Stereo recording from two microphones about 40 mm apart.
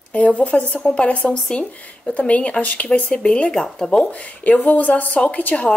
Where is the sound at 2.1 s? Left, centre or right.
Left.